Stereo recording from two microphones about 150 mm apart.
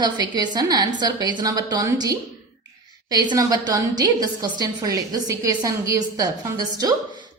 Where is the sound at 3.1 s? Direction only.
25° right (ahead or behind).